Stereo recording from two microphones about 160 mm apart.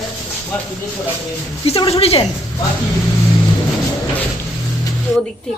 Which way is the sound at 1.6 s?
35° left (ahead or behind).